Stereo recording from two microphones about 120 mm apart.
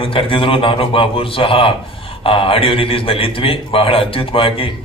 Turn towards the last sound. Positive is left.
turn(degrees=50)  # may be behind; listen again after turning